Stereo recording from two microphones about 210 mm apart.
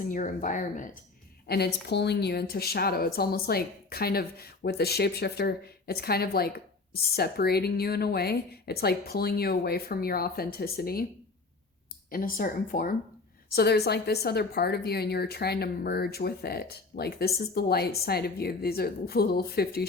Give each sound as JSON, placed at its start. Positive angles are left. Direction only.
{"t": 0.0, "sound": "speech", "side_deg": 40}
{"t": 1.5, "sound": "a woman's voice", "side_deg": 50}
{"t": 12.1, "sound": "a woman's voice", "side_deg": 45}